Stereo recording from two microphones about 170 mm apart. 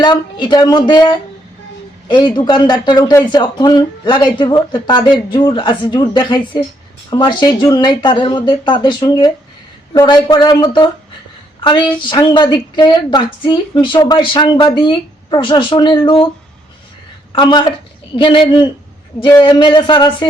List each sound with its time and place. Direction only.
0.0 s a woman's voice: 25° left (ahead or behind)
17.3 s a woman's voice: 25° left (ahead or behind)